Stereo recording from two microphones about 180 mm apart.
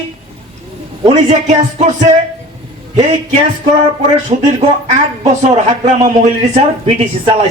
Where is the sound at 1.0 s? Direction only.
40° right (ahead or behind).